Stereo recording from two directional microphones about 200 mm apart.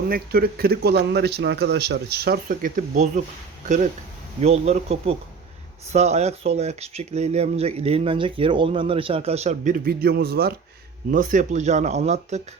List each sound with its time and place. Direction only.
0.1 s speech: 50° right (ahead or behind)
4.4 s speech: 30° right (ahead or behind)